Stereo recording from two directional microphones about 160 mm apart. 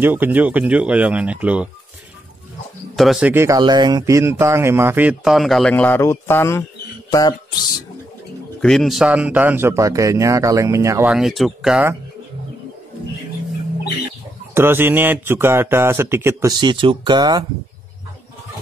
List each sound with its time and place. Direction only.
0.0 s speech: 10° right (ahead or behind)
3.0 s speech: 5° right (ahead or behind); by 7.3 s 25° left (ahead or behind)
8.5 s speech: centre (ahead or behind); by 11.1 s 20° right (ahead or behind)
11.1 s speech: 5° right (ahead or behind)
14.5 s speech: 15° right (ahead or behind)
16.5 s speech: 30° right (ahead or behind)